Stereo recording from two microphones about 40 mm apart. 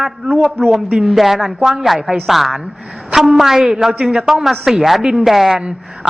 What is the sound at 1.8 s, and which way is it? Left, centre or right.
A woman's voice, centre.